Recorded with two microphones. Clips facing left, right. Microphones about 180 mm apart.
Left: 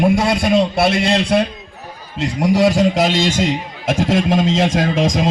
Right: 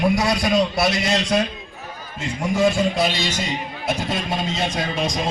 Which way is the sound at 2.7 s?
90° left.